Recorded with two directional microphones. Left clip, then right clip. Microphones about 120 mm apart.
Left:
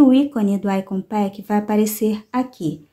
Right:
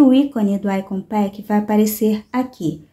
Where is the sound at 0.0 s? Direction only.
20° left (ahead or behind).